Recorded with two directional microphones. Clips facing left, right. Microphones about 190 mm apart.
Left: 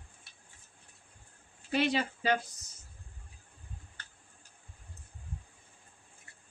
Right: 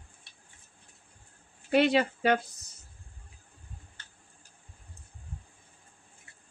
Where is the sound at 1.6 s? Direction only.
60° right (ahead or behind).